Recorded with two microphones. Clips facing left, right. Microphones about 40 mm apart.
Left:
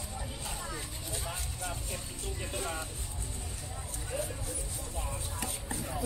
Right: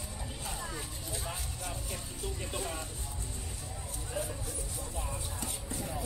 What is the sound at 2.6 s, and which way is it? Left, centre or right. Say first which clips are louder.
Vehicle: left 3 dB; centre.